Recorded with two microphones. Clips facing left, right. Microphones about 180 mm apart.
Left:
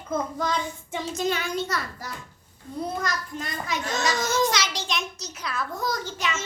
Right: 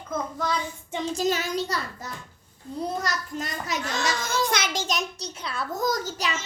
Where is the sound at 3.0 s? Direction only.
40° right (ahead or behind).